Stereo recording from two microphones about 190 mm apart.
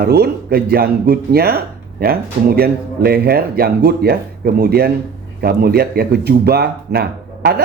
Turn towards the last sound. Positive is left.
turn(degrees=-55)  # may be behind; listen again after turning